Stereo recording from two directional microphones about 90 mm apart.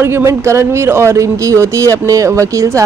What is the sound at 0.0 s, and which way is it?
Speech, 30° right (ahead or behind).